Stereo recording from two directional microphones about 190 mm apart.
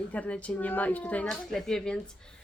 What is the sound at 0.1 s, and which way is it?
Speech, 5° left (ahead or behind).